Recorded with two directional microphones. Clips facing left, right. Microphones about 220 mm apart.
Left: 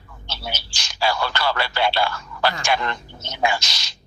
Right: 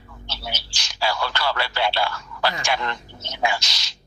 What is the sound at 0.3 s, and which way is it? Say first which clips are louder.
A man's voice: left 2 dB; 50° left (ahead or behind).